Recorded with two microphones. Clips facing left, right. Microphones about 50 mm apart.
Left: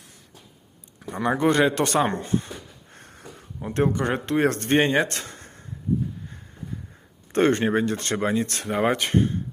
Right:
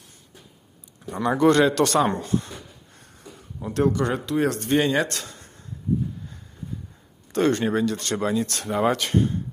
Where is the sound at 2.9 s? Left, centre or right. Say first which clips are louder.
Left 6 dB; left.